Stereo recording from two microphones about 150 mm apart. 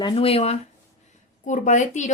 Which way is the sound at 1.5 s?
55° left (ahead or behind).